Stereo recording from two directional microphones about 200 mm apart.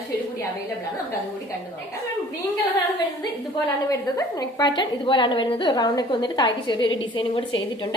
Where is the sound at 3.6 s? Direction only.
20° left (ahead or behind).